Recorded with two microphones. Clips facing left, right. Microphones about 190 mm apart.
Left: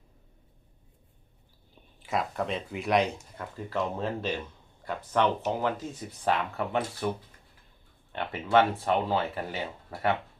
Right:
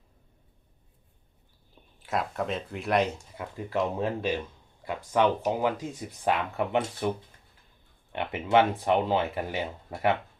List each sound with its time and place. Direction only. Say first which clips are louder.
2.0 s speech: even; centre (ahead or behind)
3.7 s speech: right 3 dB; 15° right (ahead or behind)
8.1 s speech: right 1 dB; 15° right (ahead or behind)